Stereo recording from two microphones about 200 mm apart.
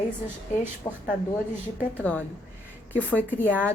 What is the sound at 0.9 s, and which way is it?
Speech, 20° left (ahead or behind).